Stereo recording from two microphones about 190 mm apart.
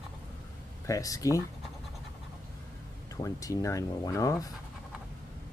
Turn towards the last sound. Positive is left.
turn(degrees=15)  # may be behind; listen again after turning